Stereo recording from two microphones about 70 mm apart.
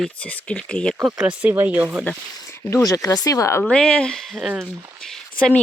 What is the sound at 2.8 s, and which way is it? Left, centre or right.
Speech, left.